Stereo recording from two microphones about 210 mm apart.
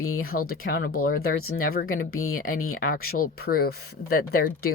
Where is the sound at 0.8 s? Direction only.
85° left.